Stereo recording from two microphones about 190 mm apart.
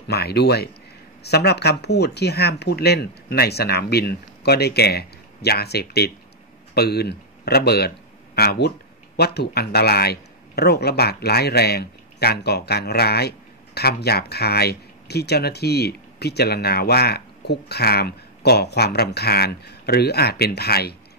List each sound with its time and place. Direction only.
0.1 s speech: 55° left (ahead or behind)